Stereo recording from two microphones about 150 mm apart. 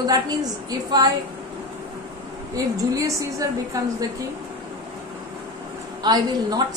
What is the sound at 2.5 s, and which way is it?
A woman's voice, 25° right (ahead or behind).